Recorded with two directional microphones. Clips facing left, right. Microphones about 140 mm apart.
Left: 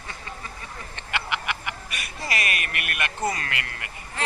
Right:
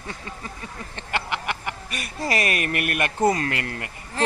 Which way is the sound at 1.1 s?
35° right (ahead or behind).